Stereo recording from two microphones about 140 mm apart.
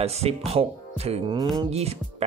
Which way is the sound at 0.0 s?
45° right (ahead or behind).